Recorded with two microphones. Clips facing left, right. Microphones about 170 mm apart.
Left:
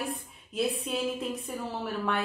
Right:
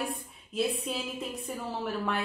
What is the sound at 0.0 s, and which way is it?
A woman's voice, centre (ahead or behind).